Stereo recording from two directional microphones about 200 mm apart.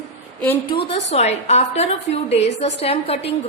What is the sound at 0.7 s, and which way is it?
A woman's voice, 25° left (ahead or behind).